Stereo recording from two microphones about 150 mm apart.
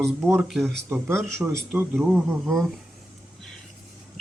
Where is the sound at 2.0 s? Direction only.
Centre (ahead or behind).